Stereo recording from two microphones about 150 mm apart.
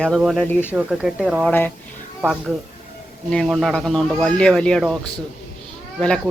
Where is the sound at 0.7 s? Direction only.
5° right (ahead or behind).